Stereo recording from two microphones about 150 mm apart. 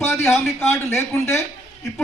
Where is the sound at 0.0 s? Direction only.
20° left (ahead or behind).